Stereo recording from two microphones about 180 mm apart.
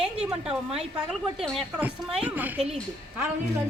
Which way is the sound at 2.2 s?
10° right (ahead or behind).